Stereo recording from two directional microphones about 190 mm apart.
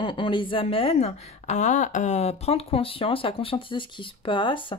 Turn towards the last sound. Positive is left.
turn(degrees=25)  # may be behind; listen again after turning